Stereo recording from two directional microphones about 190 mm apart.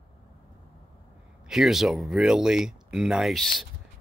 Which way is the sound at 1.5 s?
Centre (ahead or behind).